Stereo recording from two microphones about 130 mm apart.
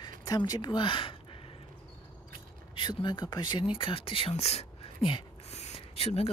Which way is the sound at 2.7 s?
35° left (ahead or behind).